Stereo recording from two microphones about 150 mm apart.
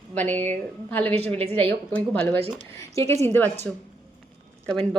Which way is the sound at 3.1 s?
45° right (ahead or behind).